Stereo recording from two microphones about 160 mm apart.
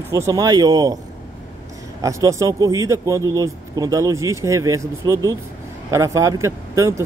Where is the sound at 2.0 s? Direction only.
20° right (ahead or behind).